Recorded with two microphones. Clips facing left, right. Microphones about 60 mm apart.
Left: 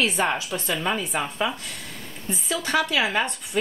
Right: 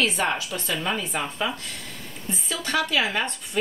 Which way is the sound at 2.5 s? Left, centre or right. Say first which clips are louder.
Left 1 dB; left.